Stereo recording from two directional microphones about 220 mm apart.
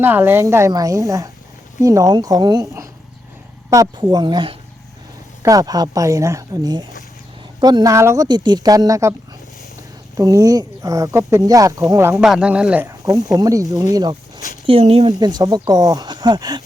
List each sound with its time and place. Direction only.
0.0 s speech: 10° right (ahead or behind)
10.2 s speech: 15° right (ahead or behind)
12.1 s speech: centre (ahead or behind); by 16.6 s 20° right (ahead or behind)